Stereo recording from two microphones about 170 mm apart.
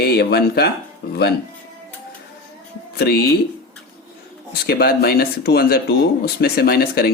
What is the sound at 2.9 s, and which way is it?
Speech, 65° left (ahead or behind).